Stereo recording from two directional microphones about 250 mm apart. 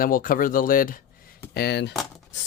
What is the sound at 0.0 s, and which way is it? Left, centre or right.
Speech, left.